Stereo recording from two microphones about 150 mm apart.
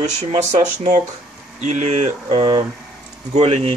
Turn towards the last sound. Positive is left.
turn(degrees=-50)  # may be behind; listen again after turning